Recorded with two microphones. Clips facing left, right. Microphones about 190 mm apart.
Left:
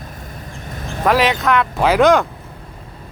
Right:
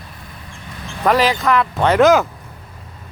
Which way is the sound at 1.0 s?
Centre (ahead or behind).